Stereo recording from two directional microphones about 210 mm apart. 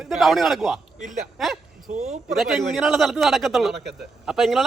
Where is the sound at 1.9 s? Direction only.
35° right (ahead or behind).